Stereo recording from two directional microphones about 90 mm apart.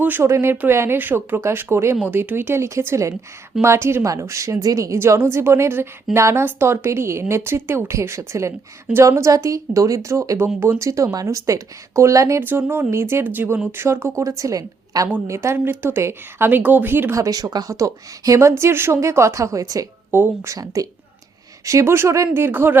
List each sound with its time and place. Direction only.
0.0 s speech: 20° right (ahead or behind); by 12.4 s 35° right (ahead or behind)
12.4 s speech: 25° right (ahead or behind)
17.2 s speech: 40° right (ahead or behind)
18.3 s speech: 30° right (ahead or behind)
20.1 s speech: 25° right (ahead or behind)
21.6 s speech: 35° right (ahead or behind)